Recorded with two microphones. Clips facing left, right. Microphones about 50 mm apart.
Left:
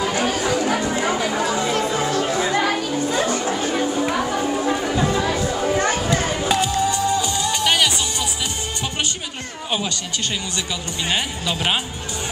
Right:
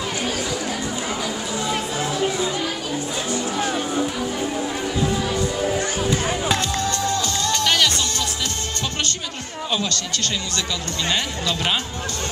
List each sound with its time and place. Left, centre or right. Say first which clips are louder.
0.0 s music: left 4 dB; left
0.7 s chatter: left 6 dB; left
2.5 s chatter: left 5 dB; left
4.0 s music: left 3 dB; left
5.5 s music: left 3 dB; left
6.5 s music: left 3 dB; centre
9.7 s a sound: even; left
11.1 s speech: left 1 dB; centre